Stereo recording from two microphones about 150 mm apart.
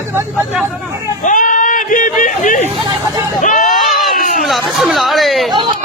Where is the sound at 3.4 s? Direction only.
60° left (ahead or behind).